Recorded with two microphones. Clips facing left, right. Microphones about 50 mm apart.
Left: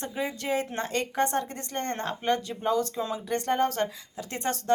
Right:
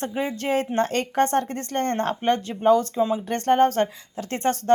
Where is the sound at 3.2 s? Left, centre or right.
Right.